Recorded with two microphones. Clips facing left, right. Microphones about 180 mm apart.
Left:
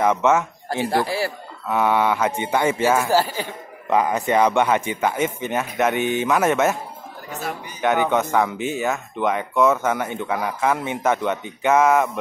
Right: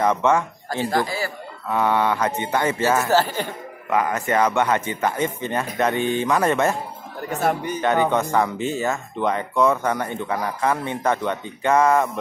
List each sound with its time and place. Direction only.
0.0 s speech: 10° left (ahead or behind)
1.7 s speech: 10° left (ahead or behind)
7.3 s a man's voice: 55° right (ahead or behind)
7.8 s speech: 5° left (ahead or behind)